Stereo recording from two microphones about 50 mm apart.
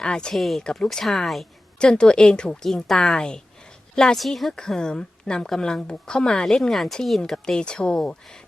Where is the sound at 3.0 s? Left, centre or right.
Centre.